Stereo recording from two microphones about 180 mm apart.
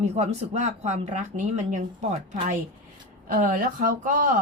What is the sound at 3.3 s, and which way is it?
A woman's voice, 45° right (ahead or behind).